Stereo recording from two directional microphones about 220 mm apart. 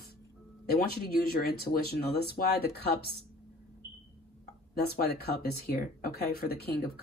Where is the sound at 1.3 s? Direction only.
45° left (ahead or behind).